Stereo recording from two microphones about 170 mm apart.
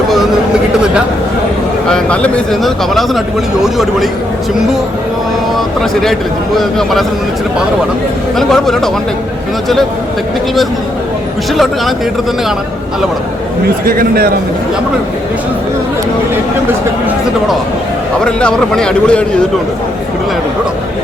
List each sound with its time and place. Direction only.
1.9 s a man's voice: 5° left (ahead or behind)
5.5 s a man's voice: centre (ahead or behind)
8.4 s a man's voice: centre (ahead or behind)
11.5 s a man's voice: centre (ahead or behind)
13.8 s a man's voice: 60° right (ahead or behind)
18.2 s a man's voice: 5° left (ahead or behind)